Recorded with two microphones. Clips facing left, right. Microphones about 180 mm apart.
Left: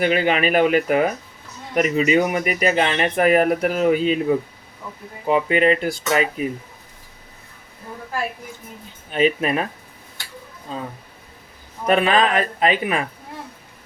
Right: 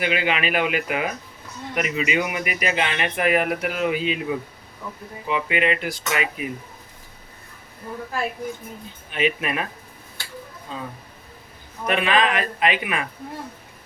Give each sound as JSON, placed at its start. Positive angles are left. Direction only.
{"t": 0.0, "sound": "speech", "side_deg": 40}
{"t": 9.1, "sound": "speech", "side_deg": 35}
{"t": 11.9, "sound": "speech", "side_deg": 35}